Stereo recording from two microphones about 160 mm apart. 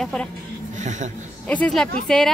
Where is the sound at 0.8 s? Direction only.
50° right (ahead or behind).